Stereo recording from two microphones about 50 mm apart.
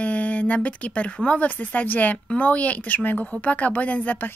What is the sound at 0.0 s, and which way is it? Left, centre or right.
Speech, left.